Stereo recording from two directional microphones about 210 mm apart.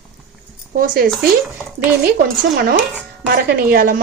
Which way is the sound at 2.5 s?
40° right (ahead or behind).